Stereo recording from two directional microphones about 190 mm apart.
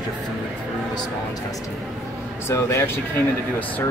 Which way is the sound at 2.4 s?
15° left (ahead or behind).